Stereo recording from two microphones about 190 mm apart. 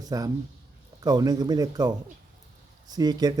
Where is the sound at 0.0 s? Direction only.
20° right (ahead or behind).